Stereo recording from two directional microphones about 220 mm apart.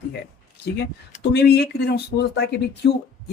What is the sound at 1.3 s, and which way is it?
Speech, 50° left (ahead or behind).